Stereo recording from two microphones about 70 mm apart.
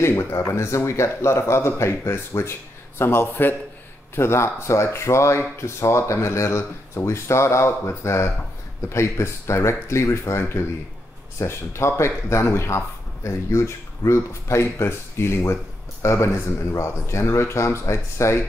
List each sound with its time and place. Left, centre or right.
0.0 s speech: left